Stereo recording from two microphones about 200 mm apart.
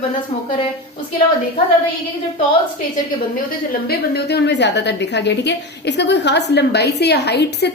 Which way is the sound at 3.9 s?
55° left (ahead or behind).